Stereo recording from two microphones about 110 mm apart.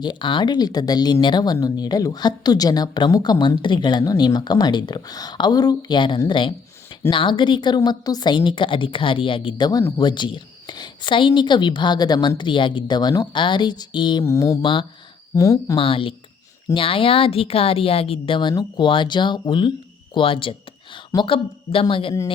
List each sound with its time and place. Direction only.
0.0 s a woman's voice: 45° left (ahead or behind)
14.3 s mantra: 30° left (ahead or behind)
14.6 s a woman's voice: 50° left (ahead or behind)
15.4 s a woman's voice: 30° left (ahead or behind)
15.8 s a woman's voice: 55° left (ahead or behind)
20.1 s a sound: 50° left (ahead or behind)
21.2 s a woman's voice: 55° left (ahead or behind)